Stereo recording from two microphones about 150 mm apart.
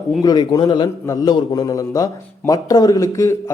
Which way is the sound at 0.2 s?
25° left (ahead or behind).